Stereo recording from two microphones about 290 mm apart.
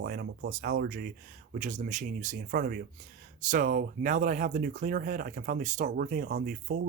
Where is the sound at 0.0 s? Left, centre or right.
Right.